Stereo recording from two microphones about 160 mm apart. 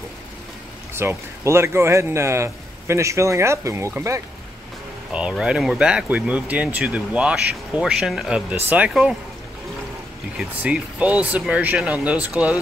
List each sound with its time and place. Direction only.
0.9 s speech: 15° right (ahead or behind)
5.1 s speech: 5° right (ahead or behind)
10.3 s speech: 5° right (ahead or behind)